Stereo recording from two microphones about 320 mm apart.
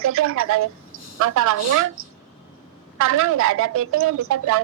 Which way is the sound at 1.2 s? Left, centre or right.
Right.